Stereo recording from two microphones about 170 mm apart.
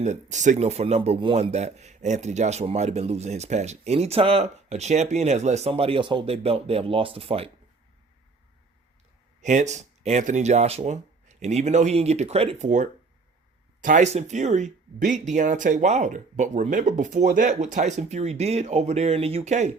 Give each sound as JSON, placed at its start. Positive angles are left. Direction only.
{"t": 0.0, "sound": "speech", "side_deg": -45}
{"t": 9.4, "sound": "speech", "side_deg": -45}